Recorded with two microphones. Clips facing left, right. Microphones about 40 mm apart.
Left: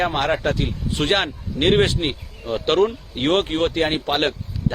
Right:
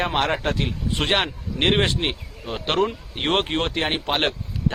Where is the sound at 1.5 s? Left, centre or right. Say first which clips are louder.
Left 3 dB; centre.